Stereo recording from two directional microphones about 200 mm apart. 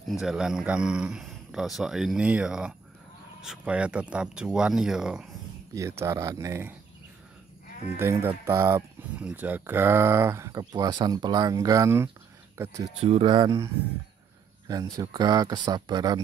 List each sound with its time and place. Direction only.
0.1 s speech: 5° right (ahead or behind)
5.8 s speech: 15° right (ahead or behind)
8.0 s speech: 10° right (ahead or behind)
13.0 s speech: 25° right (ahead or behind)
14.7 s speech: 20° right (ahead or behind)